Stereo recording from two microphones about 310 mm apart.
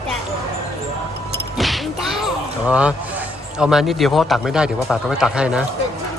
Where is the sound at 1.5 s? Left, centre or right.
Centre.